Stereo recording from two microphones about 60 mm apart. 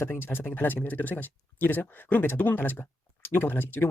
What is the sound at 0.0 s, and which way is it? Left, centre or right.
Speech, left.